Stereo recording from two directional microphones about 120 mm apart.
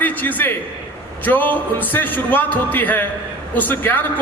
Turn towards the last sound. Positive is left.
turn(degrees=15)  # may be behind; listen again after turning